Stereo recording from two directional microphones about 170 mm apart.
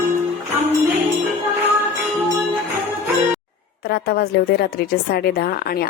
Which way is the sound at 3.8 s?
65° left (ahead or behind).